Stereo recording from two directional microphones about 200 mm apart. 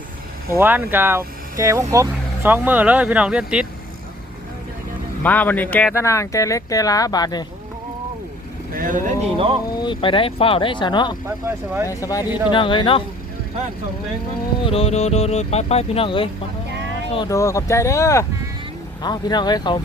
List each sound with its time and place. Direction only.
0.6 s speech: 10° right (ahead or behind)
5.2 s speech: 10° left (ahead or behind)
8.7 s speech: 45° right (ahead or behind)
9.7 s speech: 25° left (ahead or behind)
11.4 s speech: 10° right (ahead or behind)
11.9 s speech: 15° left (ahead or behind)
14.6 s speech: 30° left (ahead or behind)
17.2 s speech: 15° left (ahead or behind)